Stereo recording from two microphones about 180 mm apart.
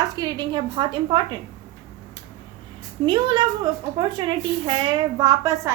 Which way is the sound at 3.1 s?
25° right (ahead or behind).